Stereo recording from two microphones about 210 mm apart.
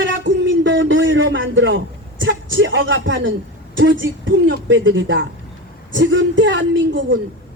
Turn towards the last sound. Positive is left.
turn(degrees=-60)  # may be behind; listen again after turning